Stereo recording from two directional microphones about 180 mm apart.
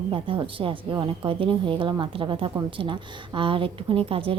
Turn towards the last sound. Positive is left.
turn(degrees=-30)  # may be behind; listen again after turning